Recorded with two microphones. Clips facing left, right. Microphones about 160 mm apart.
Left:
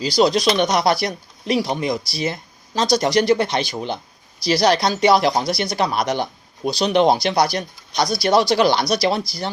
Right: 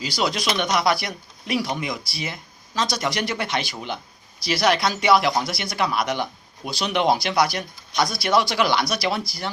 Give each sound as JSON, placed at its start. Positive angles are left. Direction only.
{"t": 0.0, "sound": "speech", "side_deg": 35}